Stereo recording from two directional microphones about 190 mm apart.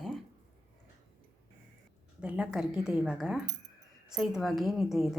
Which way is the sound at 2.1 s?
5° right (ahead or behind).